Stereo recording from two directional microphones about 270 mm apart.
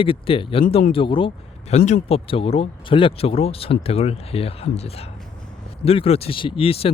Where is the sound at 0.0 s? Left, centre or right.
Centre.